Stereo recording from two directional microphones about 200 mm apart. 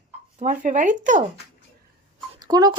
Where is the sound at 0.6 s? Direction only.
40° right (ahead or behind).